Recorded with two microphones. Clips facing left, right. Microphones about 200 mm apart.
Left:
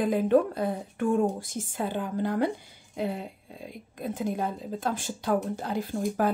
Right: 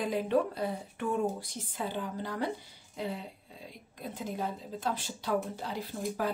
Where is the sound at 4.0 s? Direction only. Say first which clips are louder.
Left 6 dB; 50° left (ahead or behind).